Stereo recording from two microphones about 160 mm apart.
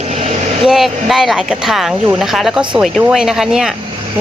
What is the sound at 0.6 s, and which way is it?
Speech, centre (ahead or behind).